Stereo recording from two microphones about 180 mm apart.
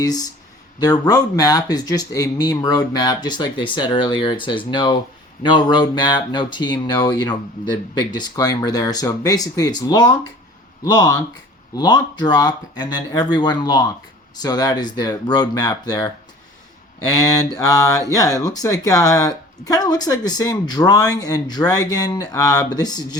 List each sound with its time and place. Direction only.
0.8 s speech: 20° left (ahead or behind)
17.2 s speech: 20° left (ahead or behind)